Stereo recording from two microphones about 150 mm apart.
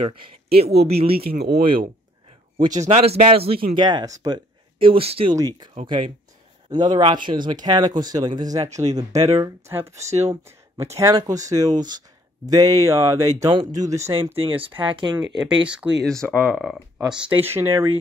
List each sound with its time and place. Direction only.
0.0 s speech: 40° right (ahead or behind)
1.1 s speech: 90° right
2.5 s speech: 30° right (ahead or behind)
2.8 s a man's voice: 45° right (ahead or behind)
3.7 s speech: 25° right (ahead or behind)
4.7 s speech: 35° right (ahead or behind); by 14.1 s 20° right (ahead or behind)
14.3 s speech: 40° right (ahead or behind)
15.1 s speech: 5° right (ahead or behind)
16.1 s speech: 5° left (ahead or behind); by 17.8 s 15° right (ahead or behind)